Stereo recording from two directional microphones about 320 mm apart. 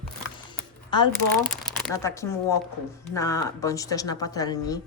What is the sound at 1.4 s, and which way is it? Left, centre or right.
A woman's voice, centre.